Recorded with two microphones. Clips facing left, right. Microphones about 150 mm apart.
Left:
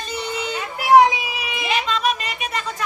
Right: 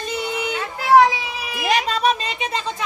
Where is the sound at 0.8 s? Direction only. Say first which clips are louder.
Left 1 dB; 20° left (ahead or behind).